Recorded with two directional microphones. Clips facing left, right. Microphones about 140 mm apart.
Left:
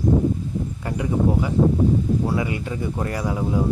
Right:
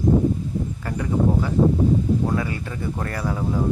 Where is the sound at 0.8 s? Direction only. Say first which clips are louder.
Even; 15° left (ahead or behind).